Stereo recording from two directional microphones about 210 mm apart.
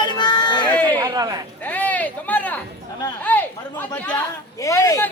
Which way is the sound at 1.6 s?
5° left (ahead or behind).